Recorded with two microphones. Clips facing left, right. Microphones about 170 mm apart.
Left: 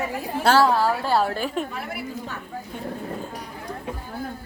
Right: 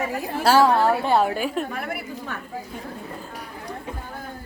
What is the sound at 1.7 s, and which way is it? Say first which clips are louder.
Speech: right 1 dB; 55° right (ahead or behind).